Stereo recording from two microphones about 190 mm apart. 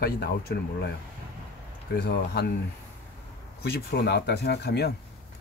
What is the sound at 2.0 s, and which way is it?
Speech, 60° left (ahead or behind).